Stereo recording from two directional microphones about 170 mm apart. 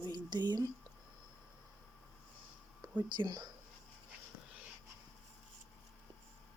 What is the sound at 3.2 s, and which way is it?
Speech, 25° right (ahead or behind).